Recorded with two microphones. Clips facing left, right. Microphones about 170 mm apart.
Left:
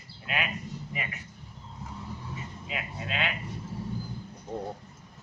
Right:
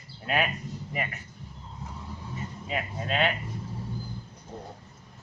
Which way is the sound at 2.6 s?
40° right (ahead or behind).